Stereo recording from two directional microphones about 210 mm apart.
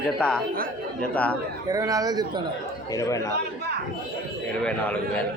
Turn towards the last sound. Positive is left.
turn(degrees=5)  # may be behind; listen again after turning